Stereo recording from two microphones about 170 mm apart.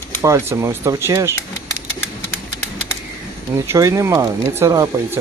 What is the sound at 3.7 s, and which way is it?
Speech, 20° right (ahead or behind).